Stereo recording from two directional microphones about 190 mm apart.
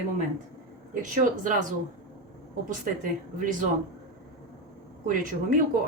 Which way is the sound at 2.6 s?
45° right (ahead or behind).